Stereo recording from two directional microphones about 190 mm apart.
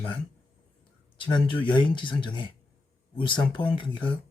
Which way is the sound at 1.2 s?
25° left (ahead or behind).